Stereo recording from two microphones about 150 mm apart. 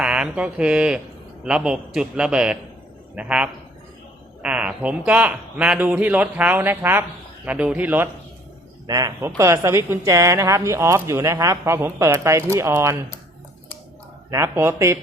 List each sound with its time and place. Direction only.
0.0 s a man's voice: 5° right (ahead or behind)
8.9 s a woman's voice: 25° right (ahead or behind)
14.3 s a woman's voice: 20° right (ahead or behind)